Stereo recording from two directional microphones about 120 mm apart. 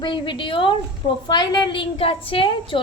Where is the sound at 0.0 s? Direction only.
40° left (ahead or behind).